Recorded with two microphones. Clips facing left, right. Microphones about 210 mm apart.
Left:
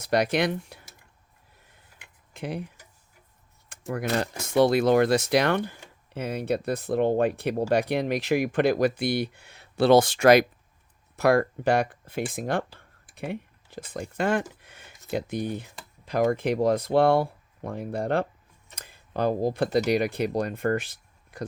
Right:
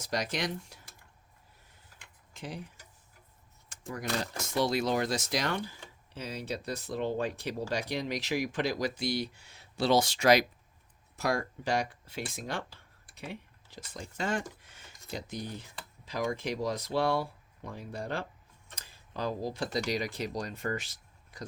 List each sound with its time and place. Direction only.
0.0 s speech: 60° left (ahead or behind)
2.3 s speech: 60° left (ahead or behind)
3.7 s speech: 60° left (ahead or behind)
14.6 s a sound: 60° left (ahead or behind)
15.1 s speech: 60° left (ahead or behind)